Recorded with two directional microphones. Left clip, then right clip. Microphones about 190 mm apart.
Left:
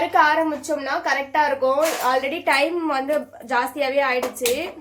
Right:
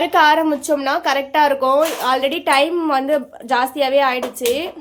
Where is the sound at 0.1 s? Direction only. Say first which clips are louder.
Right 5 dB; 40° right (ahead or behind).